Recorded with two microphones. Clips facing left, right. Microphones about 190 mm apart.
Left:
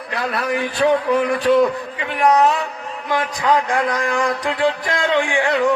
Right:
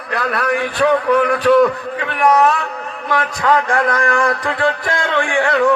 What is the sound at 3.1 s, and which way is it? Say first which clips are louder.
A man's voice: right 2 dB; 15° left (ahead or behind).